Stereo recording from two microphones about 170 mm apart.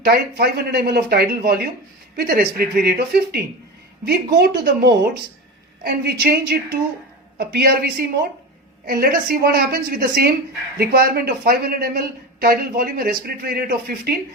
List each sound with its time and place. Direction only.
0.0 s a woman's voice: 65° right (ahead or behind)
4.0 s a woman's voice: 75° right (ahead or behind); by 14.1 s 60° right (ahead or behind)